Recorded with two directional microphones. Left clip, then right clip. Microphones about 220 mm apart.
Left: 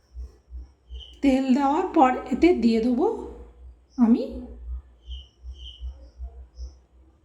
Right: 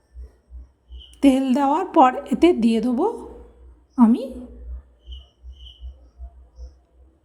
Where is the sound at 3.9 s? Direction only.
40° right (ahead or behind).